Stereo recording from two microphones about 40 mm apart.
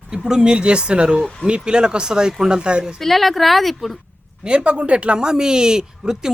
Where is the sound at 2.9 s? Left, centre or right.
Centre.